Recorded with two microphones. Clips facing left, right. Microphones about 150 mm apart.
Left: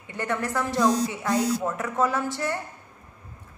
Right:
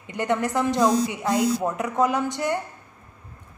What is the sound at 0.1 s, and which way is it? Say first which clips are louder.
Speech: right 4 dB; 20° right (ahead or behind).